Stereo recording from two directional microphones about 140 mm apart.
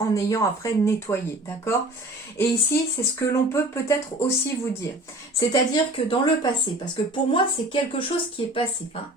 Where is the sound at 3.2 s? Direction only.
20° left (ahead or behind).